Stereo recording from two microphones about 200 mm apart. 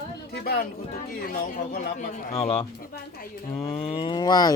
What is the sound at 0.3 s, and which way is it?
Speech, 50° left (ahead or behind).